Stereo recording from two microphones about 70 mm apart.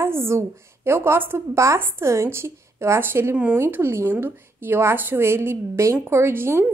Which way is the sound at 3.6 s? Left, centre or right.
Right.